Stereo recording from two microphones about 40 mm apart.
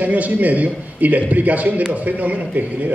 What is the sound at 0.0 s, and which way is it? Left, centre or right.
A man's voice, right.